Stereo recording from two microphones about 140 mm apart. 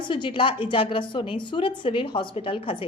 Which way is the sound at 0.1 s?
35° left (ahead or behind).